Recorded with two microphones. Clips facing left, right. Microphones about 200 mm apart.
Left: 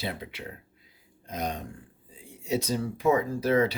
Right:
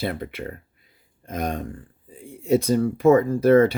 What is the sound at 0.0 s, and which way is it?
Speech, 55° right (ahead or behind).